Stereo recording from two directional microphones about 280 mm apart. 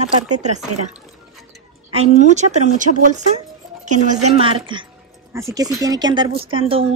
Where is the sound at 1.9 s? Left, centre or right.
Right.